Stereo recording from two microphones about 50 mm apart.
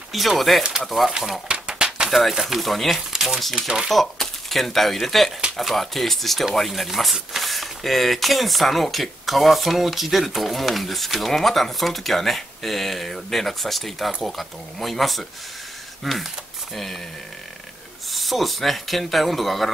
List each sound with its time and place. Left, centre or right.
0.4 s speech: centre
1.5 s a sound: centre
2.0 s speech: centre
3.9 s speech: centre
18.1 s speech: centre